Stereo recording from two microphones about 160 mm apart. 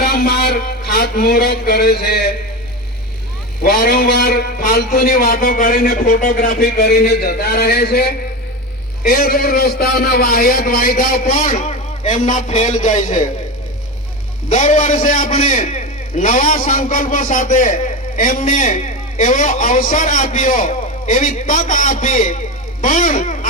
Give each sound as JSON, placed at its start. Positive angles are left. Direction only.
{"t": 0.0, "sound": "a man's voice", "side_deg": 80}
{"t": 3.6, "sound": "a man's voice", "side_deg": 75}
{"t": 9.0, "sound": "a man's voice", "side_deg": 65}
{"t": 14.5, "sound": "a man's voice", "side_deg": 50}